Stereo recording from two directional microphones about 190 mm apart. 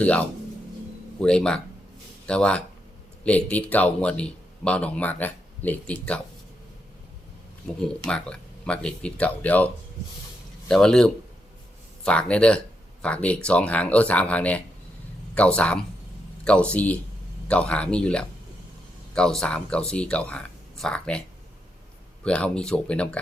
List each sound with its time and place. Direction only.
0.0 s speech: 5° left (ahead or behind)
8.0 s speech: 5° left (ahead or behind)
10.7 s speech: 5° left (ahead or behind)